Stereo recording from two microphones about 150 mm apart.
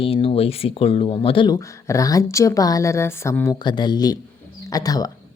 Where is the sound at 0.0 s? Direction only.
40° left (ahead or behind).